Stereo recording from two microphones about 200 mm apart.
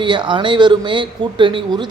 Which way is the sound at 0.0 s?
25° right (ahead or behind).